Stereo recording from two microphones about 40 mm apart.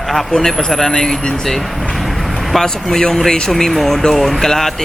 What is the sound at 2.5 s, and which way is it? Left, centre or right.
Speech, centre.